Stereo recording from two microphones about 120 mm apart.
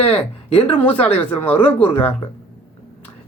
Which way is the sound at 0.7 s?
15° left (ahead or behind).